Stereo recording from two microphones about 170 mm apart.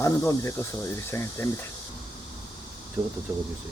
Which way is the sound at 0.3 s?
15° left (ahead or behind).